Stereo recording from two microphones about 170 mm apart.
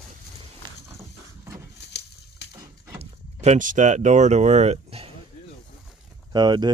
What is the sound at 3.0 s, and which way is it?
Speech, 45° right (ahead or behind).